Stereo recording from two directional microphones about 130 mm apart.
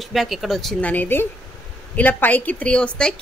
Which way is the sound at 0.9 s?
15° left (ahead or behind).